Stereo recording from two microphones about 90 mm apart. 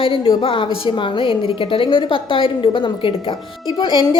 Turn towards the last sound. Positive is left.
turn(degrees=60)  # may be behind; listen again after turning